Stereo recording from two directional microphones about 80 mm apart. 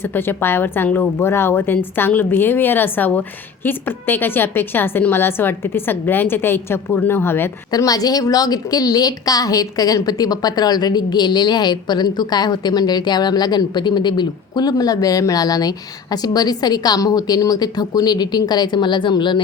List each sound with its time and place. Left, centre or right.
0.0 s a woman's voice: left
7.7 s a woman's voice: left